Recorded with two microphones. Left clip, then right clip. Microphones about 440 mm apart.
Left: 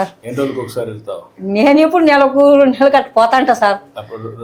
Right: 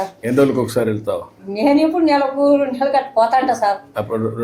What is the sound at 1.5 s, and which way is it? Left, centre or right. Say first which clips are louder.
A woman's voice: left 5 dB; left.